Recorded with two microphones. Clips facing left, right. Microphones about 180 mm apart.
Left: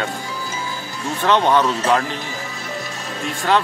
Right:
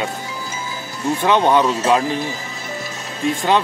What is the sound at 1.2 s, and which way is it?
Speech, 15° right (ahead or behind).